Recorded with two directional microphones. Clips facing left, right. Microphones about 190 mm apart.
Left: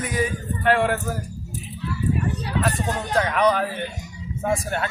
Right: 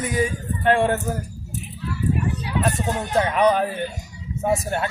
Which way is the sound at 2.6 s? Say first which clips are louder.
Right 2 dB; 20° right (ahead or behind).